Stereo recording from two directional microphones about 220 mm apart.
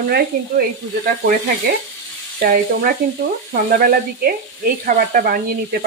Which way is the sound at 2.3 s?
40° right (ahead or behind).